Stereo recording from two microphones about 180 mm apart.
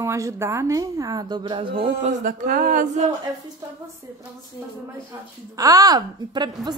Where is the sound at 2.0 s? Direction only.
50° right (ahead or behind).